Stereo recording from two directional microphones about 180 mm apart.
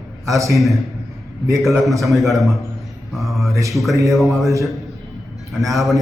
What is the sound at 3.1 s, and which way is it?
Mantra, centre (ahead or behind).